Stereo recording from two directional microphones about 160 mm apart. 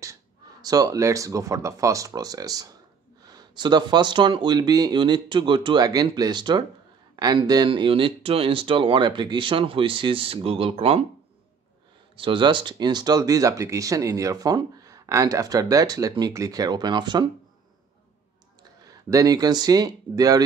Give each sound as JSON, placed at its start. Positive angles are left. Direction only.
{"t": 0.0, "sound": "speech", "side_deg": -20}
{"t": 12.2, "sound": "speech", "side_deg": -30}
{"t": 18.9, "sound": "speech", "side_deg": -20}